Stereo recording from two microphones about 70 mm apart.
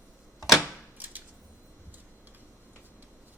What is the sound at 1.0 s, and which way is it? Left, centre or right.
Scissors, right.